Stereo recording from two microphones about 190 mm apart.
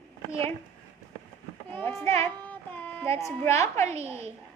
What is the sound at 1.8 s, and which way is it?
Speech, centre (ahead or behind).